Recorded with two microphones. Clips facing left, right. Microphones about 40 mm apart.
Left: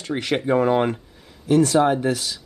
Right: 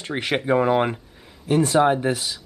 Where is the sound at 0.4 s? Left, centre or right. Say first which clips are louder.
Even; centre.